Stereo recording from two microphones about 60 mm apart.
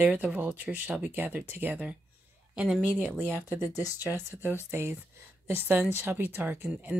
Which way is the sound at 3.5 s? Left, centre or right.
Right.